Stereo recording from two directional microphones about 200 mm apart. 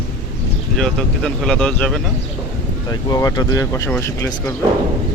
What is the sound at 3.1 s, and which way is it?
Speech, 20° left (ahead or behind).